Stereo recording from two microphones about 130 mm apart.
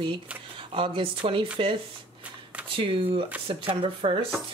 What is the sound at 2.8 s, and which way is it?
Speech, 45° right (ahead or behind).